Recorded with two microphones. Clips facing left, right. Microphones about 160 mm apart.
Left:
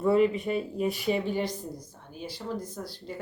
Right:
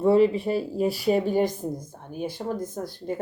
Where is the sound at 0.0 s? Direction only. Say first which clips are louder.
Right 4 dB; 30° right (ahead or behind).